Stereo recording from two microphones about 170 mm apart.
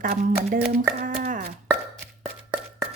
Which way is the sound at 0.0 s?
55° right (ahead or behind).